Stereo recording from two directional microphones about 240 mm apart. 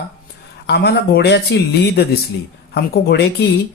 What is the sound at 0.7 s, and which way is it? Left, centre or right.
Speech, left.